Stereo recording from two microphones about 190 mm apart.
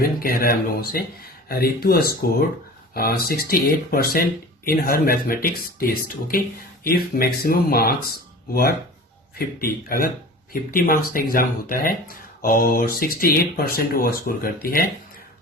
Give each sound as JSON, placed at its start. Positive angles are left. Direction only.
{"t": 0.0, "sound": "speech", "side_deg": 50}
{"t": 9.6, "sound": "speech", "side_deg": 50}